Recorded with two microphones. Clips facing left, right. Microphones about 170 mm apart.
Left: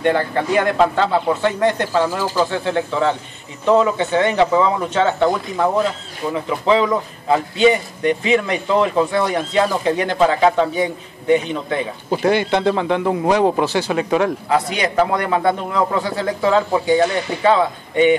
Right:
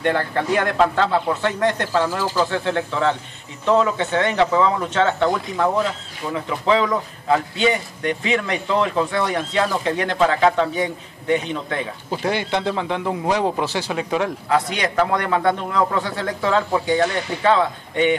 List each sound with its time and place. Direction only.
0.0 s a man's voice: 5° left (ahead or behind)
12.1 s a man's voice: 55° left (ahead or behind)
14.5 s a man's voice: 10° left (ahead or behind)